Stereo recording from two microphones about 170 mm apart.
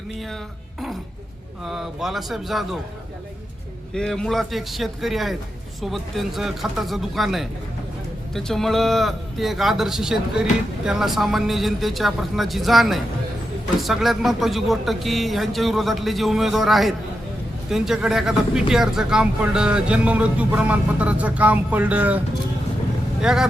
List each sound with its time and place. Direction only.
1.6 s speech: centre (ahead or behind)
3.9 s speech: 5° left (ahead or behind)
23.2 s speech: 5° right (ahead or behind)